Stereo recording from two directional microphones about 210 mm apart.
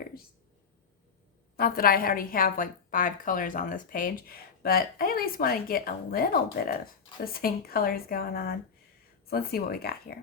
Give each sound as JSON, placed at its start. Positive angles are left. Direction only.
{"t": 1.5, "sound": "a woman's voice", "side_deg": 45}